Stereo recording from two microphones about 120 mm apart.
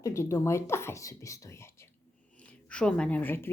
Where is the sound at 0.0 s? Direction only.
25° left (ahead or behind).